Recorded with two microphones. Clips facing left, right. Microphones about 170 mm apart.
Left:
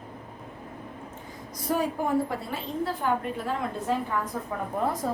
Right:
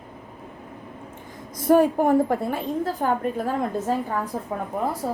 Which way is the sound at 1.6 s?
55° right (ahead or behind).